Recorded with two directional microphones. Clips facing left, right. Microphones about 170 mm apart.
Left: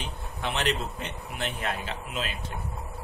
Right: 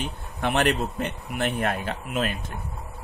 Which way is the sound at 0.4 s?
55° right (ahead or behind).